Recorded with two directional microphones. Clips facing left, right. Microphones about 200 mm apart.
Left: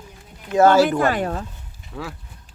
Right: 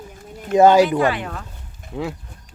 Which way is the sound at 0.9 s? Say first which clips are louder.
Even; 45° left (ahead or behind).